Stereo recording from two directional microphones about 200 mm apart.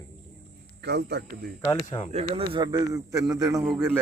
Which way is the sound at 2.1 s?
30° right (ahead or behind).